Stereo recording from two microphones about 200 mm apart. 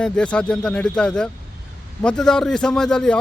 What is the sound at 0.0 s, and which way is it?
A man's voice, 5° left (ahead or behind).